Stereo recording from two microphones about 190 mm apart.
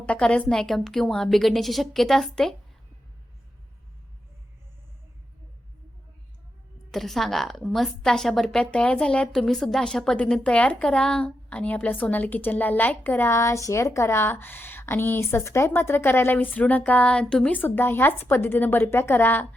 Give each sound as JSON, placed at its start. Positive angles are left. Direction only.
{"t": 0.0, "sound": "a woman's voice", "side_deg": 5}
{"t": 6.9, "sound": "a woman's voice", "side_deg": 0}